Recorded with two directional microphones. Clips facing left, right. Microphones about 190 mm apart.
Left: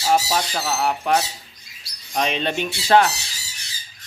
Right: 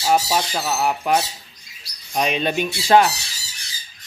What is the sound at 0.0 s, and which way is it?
Squawk, 10° right (ahead or behind).